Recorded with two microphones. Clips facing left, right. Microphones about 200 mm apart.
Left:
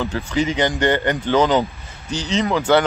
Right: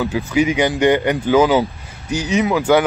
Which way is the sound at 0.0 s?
10° right (ahead or behind).